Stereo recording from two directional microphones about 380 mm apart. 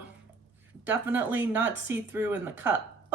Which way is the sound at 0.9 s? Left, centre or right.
Centre.